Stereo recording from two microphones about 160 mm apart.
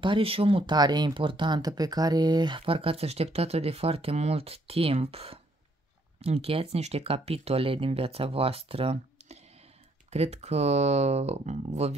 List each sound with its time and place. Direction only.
0.0 s speech: 35° right (ahead or behind)